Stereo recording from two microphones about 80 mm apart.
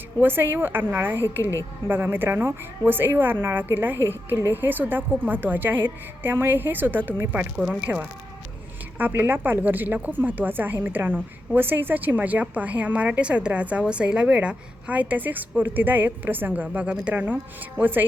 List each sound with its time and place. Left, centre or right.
0.2 s a woman's voice: right